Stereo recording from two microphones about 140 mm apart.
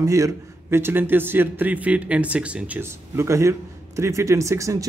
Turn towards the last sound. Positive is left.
turn(degrees=-25)  # may be behind; listen again after turning